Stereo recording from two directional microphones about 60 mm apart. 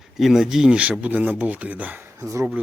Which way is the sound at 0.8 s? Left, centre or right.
Right.